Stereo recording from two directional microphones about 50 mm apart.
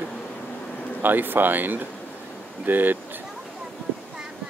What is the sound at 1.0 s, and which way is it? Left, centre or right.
Speech, right.